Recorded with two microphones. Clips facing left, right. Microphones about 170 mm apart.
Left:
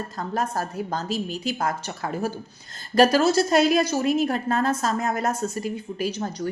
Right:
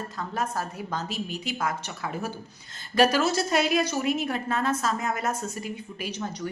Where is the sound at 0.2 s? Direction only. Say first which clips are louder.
Left 3 dB; 40° left (ahead or behind).